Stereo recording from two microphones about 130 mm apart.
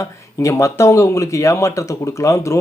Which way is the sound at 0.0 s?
20° left (ahead or behind).